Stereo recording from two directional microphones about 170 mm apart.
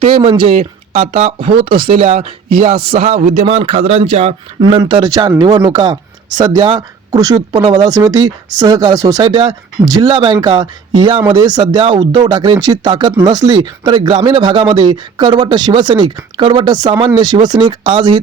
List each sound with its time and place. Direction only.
0.0 s a man's voice: 35° right (ahead or behind)
4.6 s speech: 25° right (ahead or behind)